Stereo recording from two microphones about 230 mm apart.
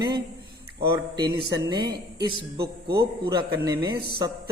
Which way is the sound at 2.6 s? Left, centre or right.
Right.